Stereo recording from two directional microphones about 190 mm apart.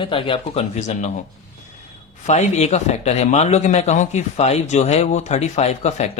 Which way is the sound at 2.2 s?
35° left (ahead or behind).